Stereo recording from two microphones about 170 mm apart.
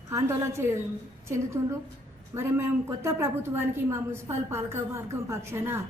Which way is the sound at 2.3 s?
15° right (ahead or behind).